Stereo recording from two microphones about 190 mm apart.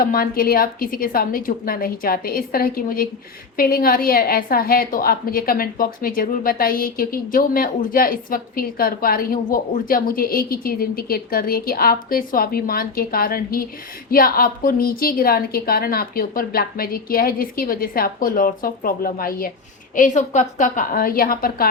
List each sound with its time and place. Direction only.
0.0 s a woman's voice: 50° left (ahead or behind)
20.0 s a woman's voice: 40° left (ahead or behind)